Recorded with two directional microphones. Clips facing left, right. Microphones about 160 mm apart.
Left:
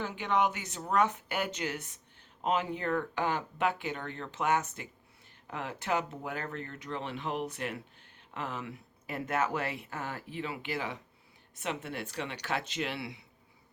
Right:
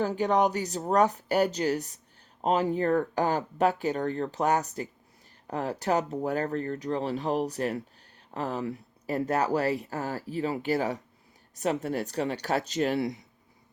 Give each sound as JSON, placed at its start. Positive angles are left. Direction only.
{"t": 0.0, "sound": "speech", "side_deg": -40}